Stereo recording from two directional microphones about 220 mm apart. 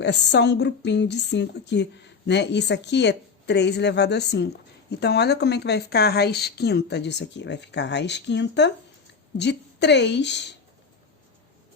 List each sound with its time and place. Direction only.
0.0 s a woman's voice: 50° left (ahead or behind)